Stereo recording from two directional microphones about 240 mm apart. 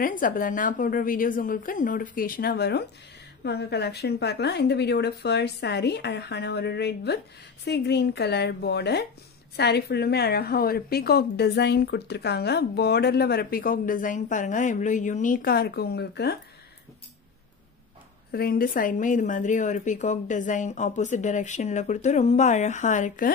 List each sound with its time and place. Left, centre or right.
0.0 s a woman's voice: left
18.3 s a woman's voice: left